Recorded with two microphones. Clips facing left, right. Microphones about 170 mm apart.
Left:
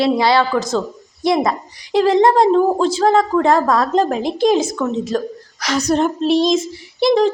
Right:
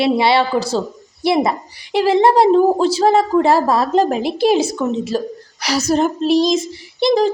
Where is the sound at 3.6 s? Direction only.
25° right (ahead or behind).